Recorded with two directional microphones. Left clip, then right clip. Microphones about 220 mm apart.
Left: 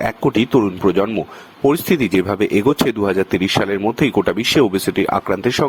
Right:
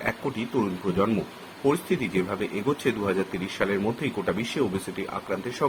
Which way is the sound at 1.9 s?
50° left (ahead or behind).